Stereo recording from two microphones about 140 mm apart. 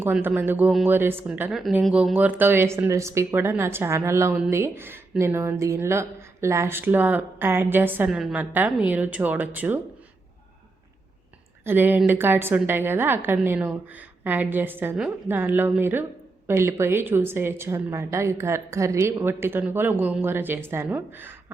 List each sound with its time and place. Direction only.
0.0 s speech: 15° right (ahead or behind)
11.6 s speech: 15° right (ahead or behind)